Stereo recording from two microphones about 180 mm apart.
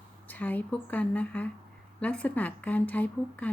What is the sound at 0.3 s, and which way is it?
A woman's voice, 10° left (ahead or behind).